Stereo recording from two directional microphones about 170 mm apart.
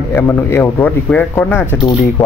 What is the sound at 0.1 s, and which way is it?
Speech, 15° left (ahead or behind).